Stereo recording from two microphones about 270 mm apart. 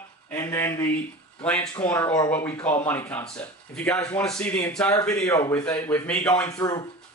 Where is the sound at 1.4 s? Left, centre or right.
Centre.